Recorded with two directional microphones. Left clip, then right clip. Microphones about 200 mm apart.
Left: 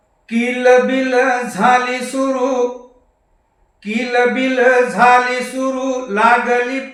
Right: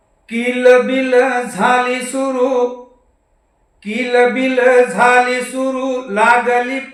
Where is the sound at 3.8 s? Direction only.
15° right (ahead or behind).